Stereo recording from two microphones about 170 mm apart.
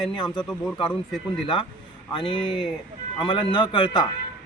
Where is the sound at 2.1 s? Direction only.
30° left (ahead or behind).